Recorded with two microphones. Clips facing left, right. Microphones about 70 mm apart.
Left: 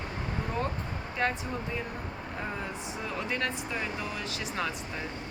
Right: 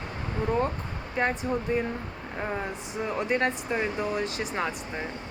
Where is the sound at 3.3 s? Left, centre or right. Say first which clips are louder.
Right 6 dB; right.